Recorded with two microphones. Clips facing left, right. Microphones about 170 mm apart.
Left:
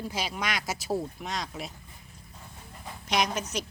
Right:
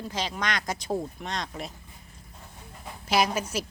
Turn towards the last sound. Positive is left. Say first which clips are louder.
# right 3 dB
turn(degrees=-5)  # may be behind; listen again after turning